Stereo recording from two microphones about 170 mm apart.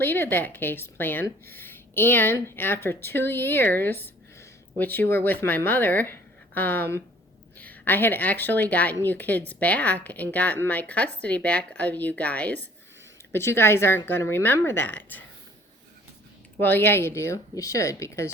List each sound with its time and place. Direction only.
0.0 s a woman's voice: 10° left (ahead or behind)
16.6 s a woman's voice: 10° left (ahead or behind)